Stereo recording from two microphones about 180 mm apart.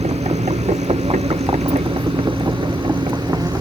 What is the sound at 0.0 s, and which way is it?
Vehicle, 40° right (ahead or behind).